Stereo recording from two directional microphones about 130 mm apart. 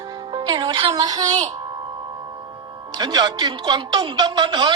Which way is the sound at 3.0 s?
30° right (ahead or behind).